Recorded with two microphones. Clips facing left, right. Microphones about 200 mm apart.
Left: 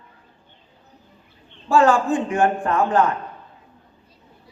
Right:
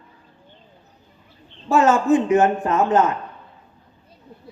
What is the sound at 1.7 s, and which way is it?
A man's voice, 20° right (ahead or behind).